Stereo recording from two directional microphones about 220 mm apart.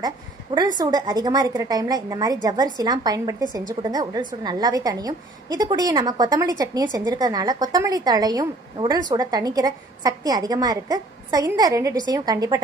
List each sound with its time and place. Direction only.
0.7 s a woman's voice: 20° right (ahead or behind)